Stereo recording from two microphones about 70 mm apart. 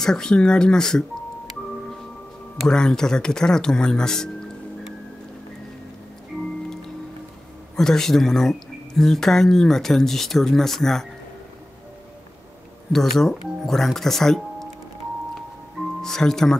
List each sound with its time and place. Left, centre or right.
0.0 s speech: centre
2.7 s speech: centre
7.7 s speech: centre
12.9 s speech: centre
16.0 s speech: centre